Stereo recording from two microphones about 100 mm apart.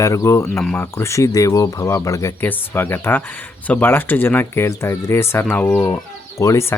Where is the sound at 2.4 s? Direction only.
20° left (ahead or behind).